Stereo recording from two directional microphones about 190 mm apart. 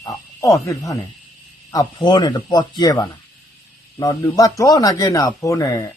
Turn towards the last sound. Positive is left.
turn(degrees=15)  # may be behind; listen again after turning